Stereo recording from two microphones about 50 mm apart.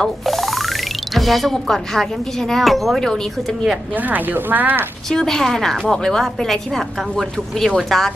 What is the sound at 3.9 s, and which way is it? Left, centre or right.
Speech, right.